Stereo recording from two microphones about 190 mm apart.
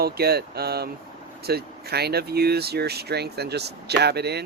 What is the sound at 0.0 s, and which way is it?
Speech, 55° right (ahead or behind).